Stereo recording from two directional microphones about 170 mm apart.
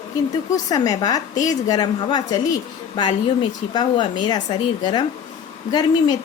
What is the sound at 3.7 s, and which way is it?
A woman's voice, 25° left (ahead or behind).